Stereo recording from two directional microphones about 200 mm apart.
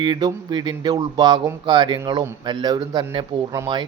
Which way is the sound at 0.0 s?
20° right (ahead or behind).